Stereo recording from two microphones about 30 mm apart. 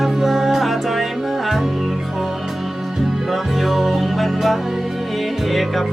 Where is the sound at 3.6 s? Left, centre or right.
Centre.